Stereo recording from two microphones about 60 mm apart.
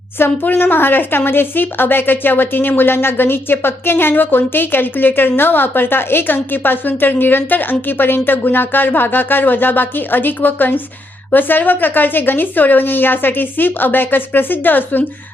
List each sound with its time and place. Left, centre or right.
0.2 s speech: left